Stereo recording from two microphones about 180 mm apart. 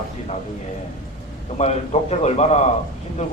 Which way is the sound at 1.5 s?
40° left (ahead or behind).